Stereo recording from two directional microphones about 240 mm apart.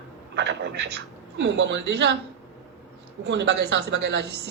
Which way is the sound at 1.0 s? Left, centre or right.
Right.